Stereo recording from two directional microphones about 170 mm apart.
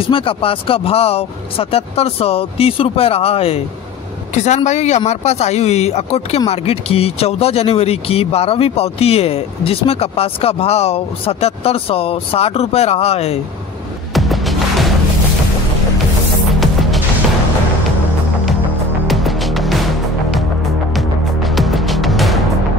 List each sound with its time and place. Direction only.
0.0 s speech: 30° left (ahead or behind)
14.1 s music: centre (ahead or behind)
19.0 s music: centre (ahead or behind)
20.9 s music: centre (ahead or behind)